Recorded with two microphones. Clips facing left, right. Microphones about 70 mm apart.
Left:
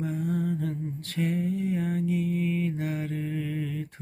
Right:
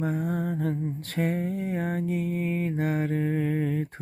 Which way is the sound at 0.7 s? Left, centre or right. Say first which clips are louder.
Right 4 dB; right.